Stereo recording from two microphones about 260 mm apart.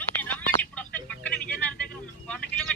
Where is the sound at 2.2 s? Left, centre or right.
Centre.